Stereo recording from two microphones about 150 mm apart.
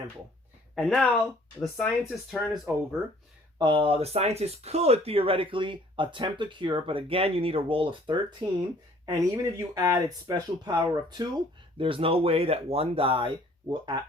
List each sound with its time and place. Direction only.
0.8 s speech: centre (ahead or behind)
3.6 s speech: 35° right (ahead or behind)
11.8 s speech: 35° right (ahead or behind)